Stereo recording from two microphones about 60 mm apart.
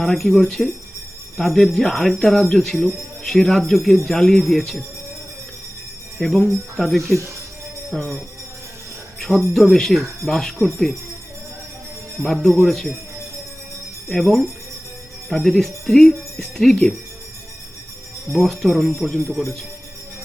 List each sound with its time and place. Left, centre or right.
0.0 s speech: centre
6.1 s speech: centre
9.6 s speech: centre
12.2 s speech: centre
14.1 s speech: centre
18.3 s speech: centre